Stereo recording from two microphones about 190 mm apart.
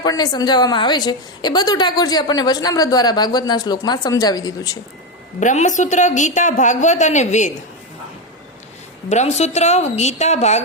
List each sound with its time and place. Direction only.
0.0 s a woman's voice: 20° left (ahead or behind)
5.4 s a woman's voice: 40° left (ahead or behind)
9.0 s a woman's voice: 35° left (ahead or behind)